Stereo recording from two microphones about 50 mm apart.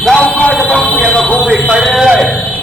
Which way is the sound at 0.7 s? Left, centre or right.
Left.